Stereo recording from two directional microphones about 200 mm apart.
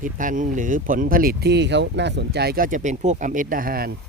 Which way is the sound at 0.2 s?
40° right (ahead or behind).